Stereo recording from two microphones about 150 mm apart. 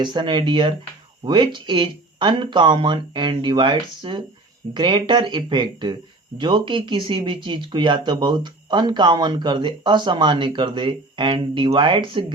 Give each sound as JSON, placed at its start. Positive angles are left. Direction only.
{"t": 0.0, "sound": "speech", "side_deg": -30}